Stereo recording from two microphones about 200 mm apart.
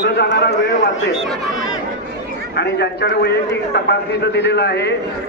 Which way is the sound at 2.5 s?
55° left (ahead or behind).